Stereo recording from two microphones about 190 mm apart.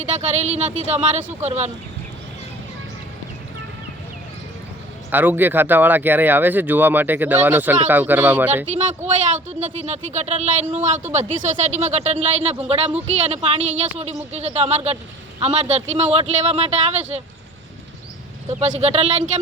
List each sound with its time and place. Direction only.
0.2 s speech: 35° right (ahead or behind)
5.1 s speech: 10° right (ahead or behind)
9.0 s speech: 35° right (ahead or behind)
18.6 s speech: 35° right (ahead or behind)